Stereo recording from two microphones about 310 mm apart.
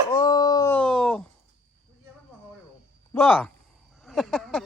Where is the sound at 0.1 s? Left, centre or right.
Centre.